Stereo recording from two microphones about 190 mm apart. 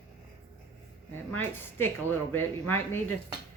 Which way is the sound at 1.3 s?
10° left (ahead or behind).